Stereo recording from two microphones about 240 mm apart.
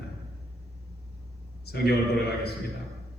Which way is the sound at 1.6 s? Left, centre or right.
Left.